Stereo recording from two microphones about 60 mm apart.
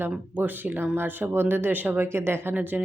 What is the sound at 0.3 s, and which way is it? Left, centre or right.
Speech, right.